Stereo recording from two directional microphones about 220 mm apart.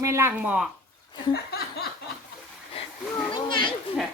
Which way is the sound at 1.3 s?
45° left (ahead or behind).